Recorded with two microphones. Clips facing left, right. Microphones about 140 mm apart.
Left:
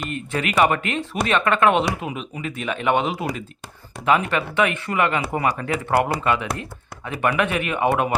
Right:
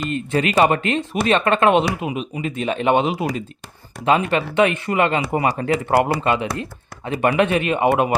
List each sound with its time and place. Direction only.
0.1 s speech: 25° right (ahead or behind)